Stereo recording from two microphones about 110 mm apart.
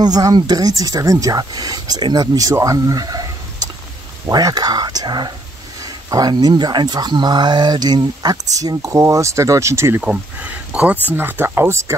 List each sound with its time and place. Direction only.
0.0 s speech: 40° right (ahead or behind)
2.5 s a sound: 30° right (ahead or behind)
4.3 s speech: 35° right (ahead or behind)
10.0 s speech: 15° right (ahead or behind)